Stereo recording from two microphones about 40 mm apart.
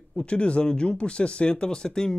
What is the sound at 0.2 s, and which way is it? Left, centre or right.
Speech, left.